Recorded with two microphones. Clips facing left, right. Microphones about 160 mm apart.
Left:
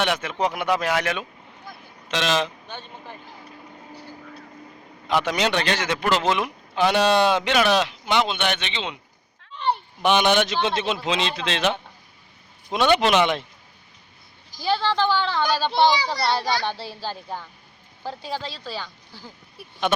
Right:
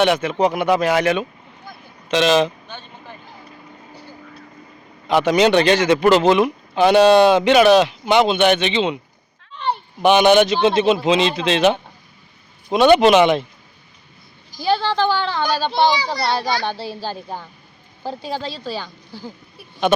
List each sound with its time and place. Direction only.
0.0 s speech: centre (ahead or behind)
1.6 s a sound: centre (ahead or behind)
5.0 s speech: centre (ahead or behind)
10.0 s speech: 5° right (ahead or behind)
12.9 s speech: 35° right (ahead or behind)
13.1 s speech: 5° right (ahead or behind)
14.6 s speech: 5° right (ahead or behind)
18.6 s speech: 10° right (ahead or behind)